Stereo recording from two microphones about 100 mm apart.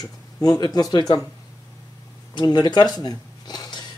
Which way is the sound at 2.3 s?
45° left (ahead or behind).